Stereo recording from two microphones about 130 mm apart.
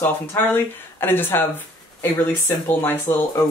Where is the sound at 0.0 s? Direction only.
15° left (ahead or behind).